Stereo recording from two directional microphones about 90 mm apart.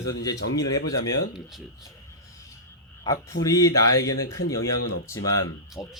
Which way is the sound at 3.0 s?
45° left (ahead or behind).